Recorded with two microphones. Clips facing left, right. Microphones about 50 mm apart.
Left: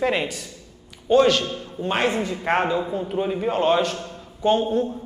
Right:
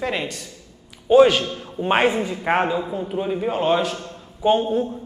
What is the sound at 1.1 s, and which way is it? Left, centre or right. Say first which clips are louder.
A man's voice: right 3 dB; centre.